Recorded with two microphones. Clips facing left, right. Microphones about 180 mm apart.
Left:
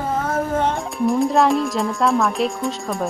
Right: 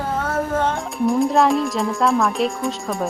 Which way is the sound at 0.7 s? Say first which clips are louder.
Even; centre (ahead or behind).